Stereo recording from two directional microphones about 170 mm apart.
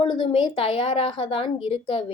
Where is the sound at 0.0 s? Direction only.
30° left (ahead or behind).